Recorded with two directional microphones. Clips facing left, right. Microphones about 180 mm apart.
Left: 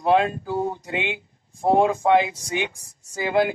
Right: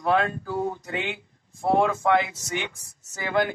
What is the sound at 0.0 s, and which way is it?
Speech, 20° left (ahead or behind).